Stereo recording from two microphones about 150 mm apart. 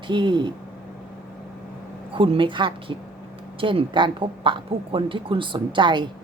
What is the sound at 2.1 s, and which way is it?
A woman's voice, 35° right (ahead or behind).